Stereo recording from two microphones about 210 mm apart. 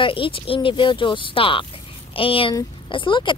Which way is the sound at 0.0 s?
25° left (ahead or behind).